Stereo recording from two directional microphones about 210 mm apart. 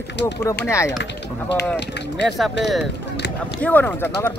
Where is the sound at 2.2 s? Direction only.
Centre (ahead or behind).